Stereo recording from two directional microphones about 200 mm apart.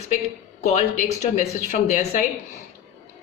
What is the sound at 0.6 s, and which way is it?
Speech, 35° left (ahead or behind).